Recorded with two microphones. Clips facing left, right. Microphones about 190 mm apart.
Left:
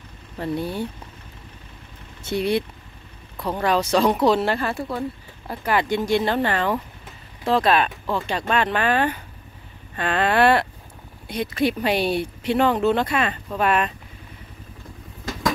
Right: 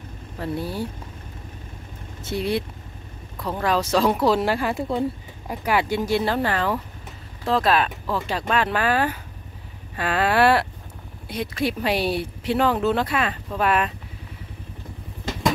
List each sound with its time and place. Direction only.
0.4 s speech: 5° right (ahead or behind)
2.2 s speech: centre (ahead or behind)